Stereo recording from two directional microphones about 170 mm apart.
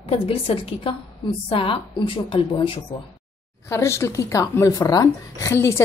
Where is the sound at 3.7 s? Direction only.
15° left (ahead or behind).